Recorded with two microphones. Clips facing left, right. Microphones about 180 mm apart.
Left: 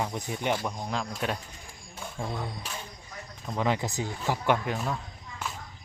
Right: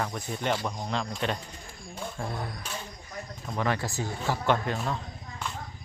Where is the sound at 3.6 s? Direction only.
15° left (ahead or behind).